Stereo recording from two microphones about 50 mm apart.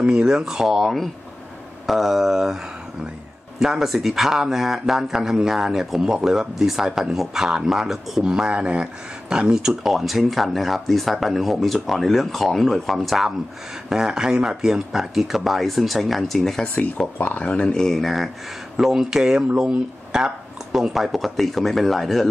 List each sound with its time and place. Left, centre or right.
0.0 s speech: centre
16.6 s speech: left
17.4 s speech: left
17.8 s speech: centre